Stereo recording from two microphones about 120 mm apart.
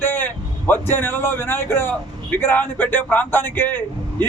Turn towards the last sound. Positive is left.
turn(degrees=15)  # may be behind; listen again after turning